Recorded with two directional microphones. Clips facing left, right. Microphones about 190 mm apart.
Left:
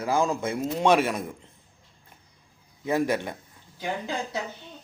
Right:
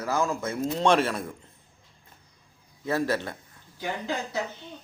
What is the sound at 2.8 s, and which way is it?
Speech, 15° left (ahead or behind).